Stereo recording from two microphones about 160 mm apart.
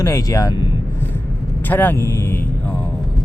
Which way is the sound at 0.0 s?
20° left (ahead or behind).